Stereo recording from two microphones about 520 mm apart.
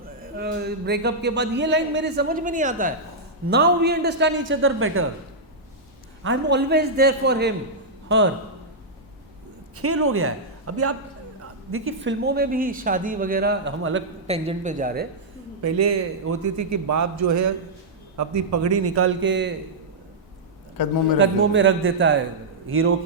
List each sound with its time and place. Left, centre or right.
0.2 s speech: centre
6.2 s a man's voice: right
9.7 s a man's voice: right
15.6 s a man's voice: right
20.8 s a man's voice: left
21.2 s speech: right